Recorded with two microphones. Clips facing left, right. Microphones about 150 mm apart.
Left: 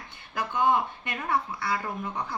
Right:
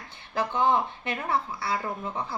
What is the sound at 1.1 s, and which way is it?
Speech, 25° right (ahead or behind).